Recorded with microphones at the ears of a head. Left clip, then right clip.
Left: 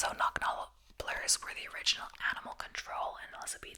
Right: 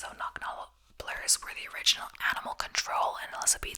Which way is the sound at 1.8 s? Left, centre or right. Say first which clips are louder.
Right 6 dB; right.